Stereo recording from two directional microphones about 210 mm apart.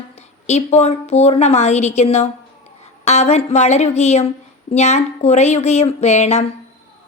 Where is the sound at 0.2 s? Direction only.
30° left (ahead or behind).